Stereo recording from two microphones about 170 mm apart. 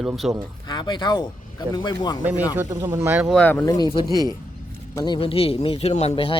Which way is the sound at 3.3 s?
10° left (ahead or behind).